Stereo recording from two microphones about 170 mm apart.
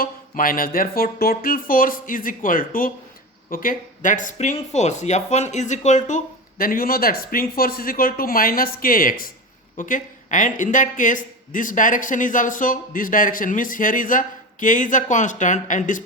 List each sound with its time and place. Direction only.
0.0 s speech: 55° left (ahead or behind)